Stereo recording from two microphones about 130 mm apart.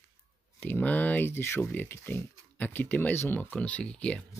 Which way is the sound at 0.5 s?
15° left (ahead or behind).